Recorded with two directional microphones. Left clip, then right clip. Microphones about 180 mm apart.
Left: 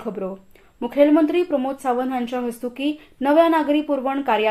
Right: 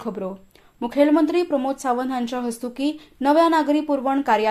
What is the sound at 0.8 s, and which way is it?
A woman's voice, 40° right (ahead or behind).